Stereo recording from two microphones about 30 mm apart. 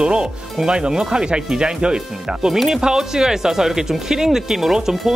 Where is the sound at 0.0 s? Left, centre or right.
Right.